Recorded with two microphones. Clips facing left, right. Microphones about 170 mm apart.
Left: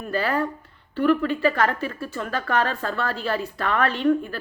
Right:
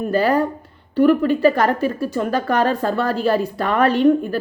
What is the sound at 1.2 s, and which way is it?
Speech, 40° right (ahead or behind).